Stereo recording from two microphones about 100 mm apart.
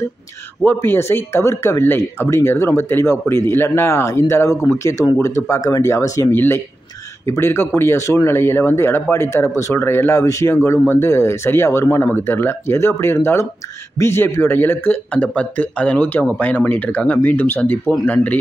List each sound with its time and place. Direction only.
0.7 s speech: 25° left (ahead or behind)
6.3 s speech: 20° left (ahead or behind)